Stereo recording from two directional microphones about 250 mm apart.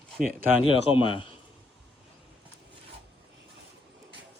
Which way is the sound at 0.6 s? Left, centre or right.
Left.